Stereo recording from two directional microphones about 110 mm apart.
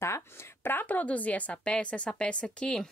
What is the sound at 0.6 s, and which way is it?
A woman's voice, 15° left (ahead or behind).